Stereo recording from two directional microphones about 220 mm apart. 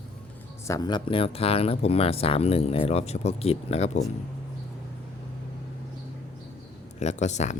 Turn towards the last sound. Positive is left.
turn(degrees=30)  # may be behind; listen again after turning